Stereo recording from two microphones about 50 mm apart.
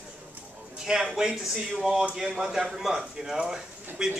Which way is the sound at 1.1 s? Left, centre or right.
Centre.